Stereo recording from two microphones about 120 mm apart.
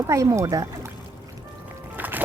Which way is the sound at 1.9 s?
15° right (ahead or behind).